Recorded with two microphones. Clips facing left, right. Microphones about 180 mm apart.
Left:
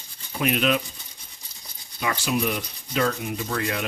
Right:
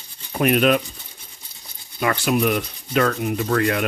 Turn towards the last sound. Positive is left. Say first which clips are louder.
# right 7 dB
turn(degrees=-60)  # may be behind; listen again after turning